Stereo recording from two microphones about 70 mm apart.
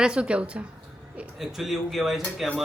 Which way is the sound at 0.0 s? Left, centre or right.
Centre.